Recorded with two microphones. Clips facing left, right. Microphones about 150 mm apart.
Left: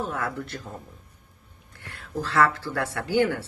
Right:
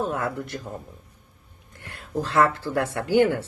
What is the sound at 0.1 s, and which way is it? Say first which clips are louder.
Speech: right 3 dB; 20° right (ahead or behind).